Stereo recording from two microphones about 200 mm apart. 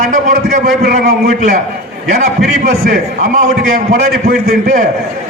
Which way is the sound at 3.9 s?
50° right (ahead or behind).